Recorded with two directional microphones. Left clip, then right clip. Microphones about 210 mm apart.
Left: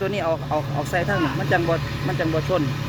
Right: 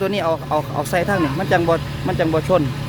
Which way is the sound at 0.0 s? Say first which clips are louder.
Right 4 dB; 20° right (ahead or behind).